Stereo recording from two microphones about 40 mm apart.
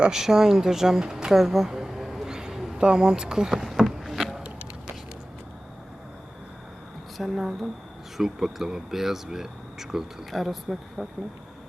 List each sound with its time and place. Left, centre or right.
0.1 s speech: centre
3.8 s a sound: centre
7.2 s speech: centre